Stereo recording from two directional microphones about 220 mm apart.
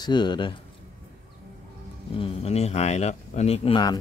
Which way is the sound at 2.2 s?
30° left (ahead or behind).